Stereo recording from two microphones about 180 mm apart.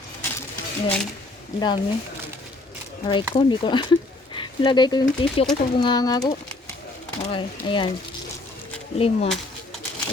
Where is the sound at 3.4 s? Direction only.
25° left (ahead or behind).